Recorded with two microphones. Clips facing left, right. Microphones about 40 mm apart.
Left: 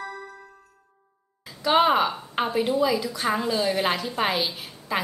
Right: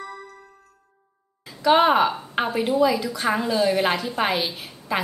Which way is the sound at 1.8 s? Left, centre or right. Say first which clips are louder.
Right 2 dB; centre.